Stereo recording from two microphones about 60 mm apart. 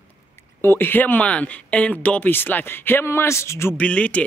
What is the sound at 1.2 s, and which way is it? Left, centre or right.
Speech, left.